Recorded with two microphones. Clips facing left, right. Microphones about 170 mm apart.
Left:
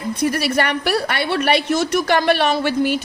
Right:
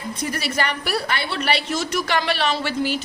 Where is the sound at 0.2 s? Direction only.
55° left (ahead or behind).